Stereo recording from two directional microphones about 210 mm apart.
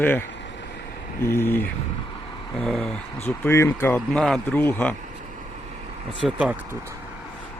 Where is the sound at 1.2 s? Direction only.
10° left (ahead or behind).